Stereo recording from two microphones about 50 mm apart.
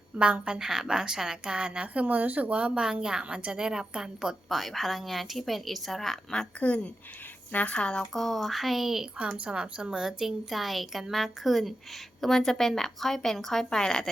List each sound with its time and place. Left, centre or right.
0.2 s a woman's voice: right
0.6 s a woman's voice: centre
4.4 s a woman's voice: centre
6.6 s speech: left
8.1 s a woman's voice: centre
9.4 s a woman's voice: centre